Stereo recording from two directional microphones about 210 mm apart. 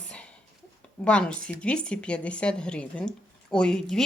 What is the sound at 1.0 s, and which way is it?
A woman's voice, 5° left (ahead or behind).